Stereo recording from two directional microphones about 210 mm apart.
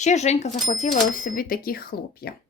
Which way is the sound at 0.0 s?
35° left (ahead or behind).